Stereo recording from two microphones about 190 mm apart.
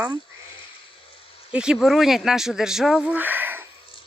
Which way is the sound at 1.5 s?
5° right (ahead or behind).